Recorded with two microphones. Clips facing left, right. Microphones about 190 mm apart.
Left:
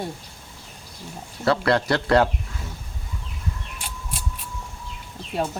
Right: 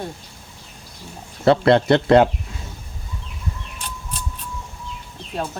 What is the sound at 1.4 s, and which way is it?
Speech, 25° right (ahead or behind).